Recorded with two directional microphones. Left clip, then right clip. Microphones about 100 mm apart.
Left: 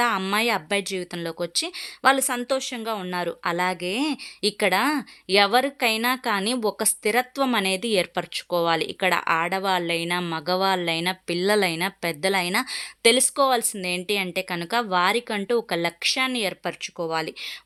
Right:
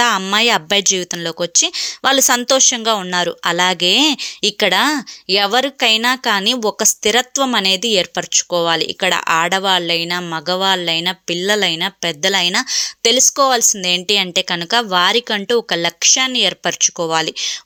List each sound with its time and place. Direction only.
0.3 s a woman's voice: 35° right (ahead or behind)
9.2 s a woman's voice: 35° right (ahead or behind)